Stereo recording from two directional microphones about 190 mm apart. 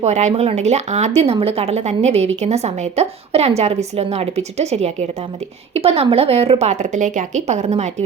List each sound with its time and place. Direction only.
0.0 s speech: 40° right (ahead or behind)